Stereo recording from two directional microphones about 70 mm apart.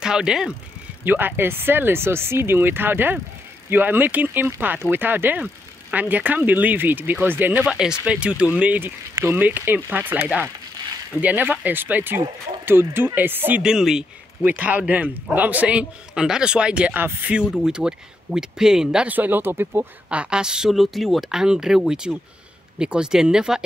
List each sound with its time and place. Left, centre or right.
0.0 s a man's voice: centre
1.0 s speech: right
7.6 s a man's voice: centre
9.2 s speech: right
13.6 s a man's voice: centre
14.4 s a man's voice: right
16.9 s speech: right
17.6 s a man's voice: centre
19.0 s speech: right
20.1 s a man's voice: centre